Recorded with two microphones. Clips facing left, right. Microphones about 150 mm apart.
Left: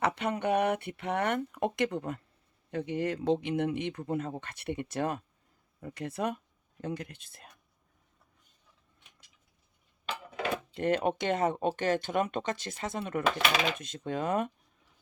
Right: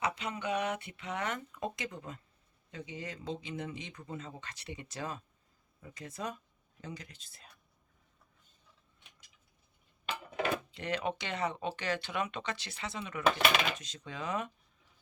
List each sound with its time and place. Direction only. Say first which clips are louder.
0.0 s speech: left 6 dB; 60° left (ahead or behind)
10.8 s speech: left 7 dB; 50° left (ahead or behind)